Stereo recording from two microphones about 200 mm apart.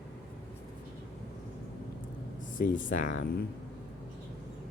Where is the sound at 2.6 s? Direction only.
40° left (ahead or behind).